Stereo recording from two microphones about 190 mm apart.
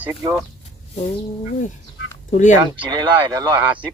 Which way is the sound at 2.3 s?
40° left (ahead or behind).